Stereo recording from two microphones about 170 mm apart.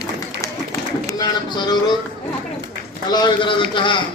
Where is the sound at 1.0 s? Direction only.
20° left (ahead or behind).